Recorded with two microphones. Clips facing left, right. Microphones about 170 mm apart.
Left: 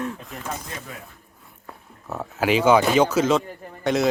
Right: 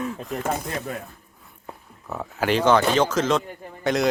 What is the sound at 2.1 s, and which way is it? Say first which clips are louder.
Speech: left 1 dB; centre (ahead or behind).